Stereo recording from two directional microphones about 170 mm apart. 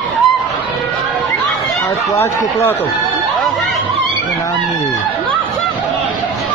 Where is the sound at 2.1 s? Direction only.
15° left (ahead or behind).